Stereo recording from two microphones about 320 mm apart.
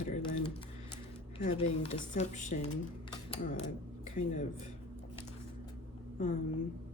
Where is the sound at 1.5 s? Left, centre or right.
Centre.